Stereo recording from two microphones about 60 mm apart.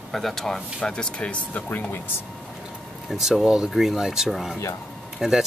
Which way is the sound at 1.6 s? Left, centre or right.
Left.